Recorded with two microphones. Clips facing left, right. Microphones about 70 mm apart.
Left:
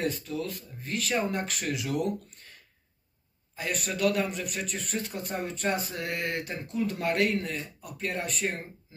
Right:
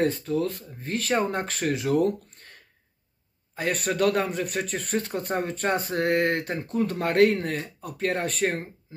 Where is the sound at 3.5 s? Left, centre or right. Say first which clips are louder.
Right 6 dB; right.